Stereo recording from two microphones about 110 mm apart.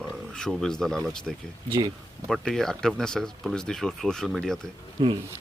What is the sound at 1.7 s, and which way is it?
Speech, 45° right (ahead or behind).